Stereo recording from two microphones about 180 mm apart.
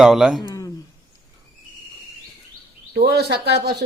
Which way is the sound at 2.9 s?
60° right (ahead or behind).